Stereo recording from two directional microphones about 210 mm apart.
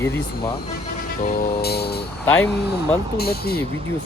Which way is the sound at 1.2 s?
45° left (ahead or behind).